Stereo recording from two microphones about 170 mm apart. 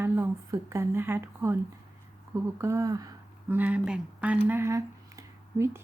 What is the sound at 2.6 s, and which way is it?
Speech, 15° right (ahead or behind).